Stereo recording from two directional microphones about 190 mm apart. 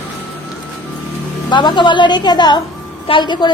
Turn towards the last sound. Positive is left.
turn(degrees=25)  # may be behind; listen again after turning